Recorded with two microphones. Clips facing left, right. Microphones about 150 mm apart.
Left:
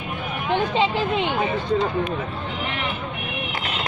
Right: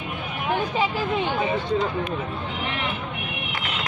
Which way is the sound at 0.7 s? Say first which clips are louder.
Left 3 dB; 20° left (ahead or behind).